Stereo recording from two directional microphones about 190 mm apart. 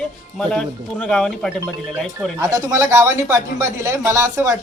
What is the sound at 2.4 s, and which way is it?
Speech, 15° right (ahead or behind).